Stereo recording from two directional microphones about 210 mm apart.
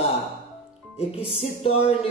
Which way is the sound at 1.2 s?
25° left (ahead or behind).